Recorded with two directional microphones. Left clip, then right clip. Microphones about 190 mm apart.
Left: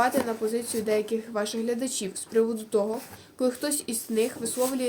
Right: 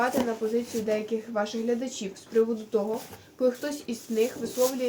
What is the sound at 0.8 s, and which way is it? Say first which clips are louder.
Speech: left 2 dB; 60° left (ahead or behind).